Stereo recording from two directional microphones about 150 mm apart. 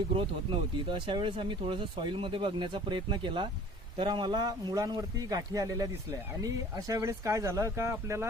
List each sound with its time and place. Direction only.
0.1 s a man's voice: 35° right (ahead or behind); by 8.3 s 20° right (ahead or behind)